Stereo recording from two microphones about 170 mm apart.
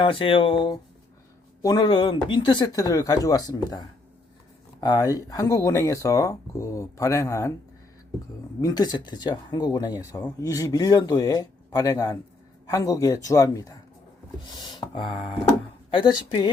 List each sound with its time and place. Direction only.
0.0 s speech: 30° left (ahead or behind)
8.6 s speech: 25° left (ahead or behind)